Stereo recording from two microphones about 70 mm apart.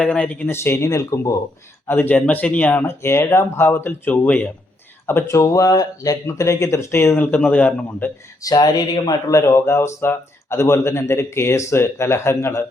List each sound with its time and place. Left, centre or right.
0.0 s speech: centre
0.4 s speech: left
1.9 s speech: left
5.2 s speech: left
8.4 s speech: left
9.3 s speech: left